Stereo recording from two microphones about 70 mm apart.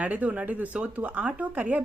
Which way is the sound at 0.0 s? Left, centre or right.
Right.